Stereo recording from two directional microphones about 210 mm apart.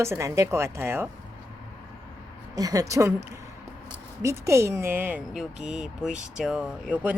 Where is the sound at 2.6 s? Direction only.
15° right (ahead or behind).